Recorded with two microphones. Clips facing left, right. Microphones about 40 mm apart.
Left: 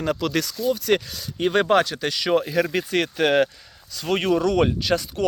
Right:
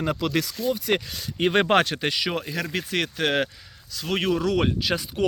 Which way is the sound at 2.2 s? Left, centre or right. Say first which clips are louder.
Left 7 dB; centre.